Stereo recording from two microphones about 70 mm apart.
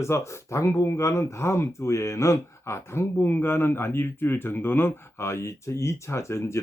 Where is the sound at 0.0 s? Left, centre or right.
Left.